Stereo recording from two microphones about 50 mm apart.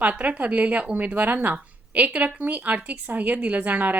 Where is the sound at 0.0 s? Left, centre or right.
Right.